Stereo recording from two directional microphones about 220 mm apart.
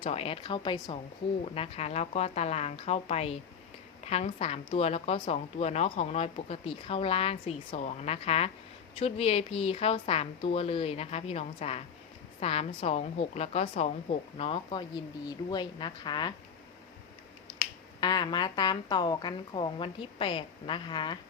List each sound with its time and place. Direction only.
0.0 s speech: 25° left (ahead or behind)
18.0 s speech: 20° left (ahead or behind)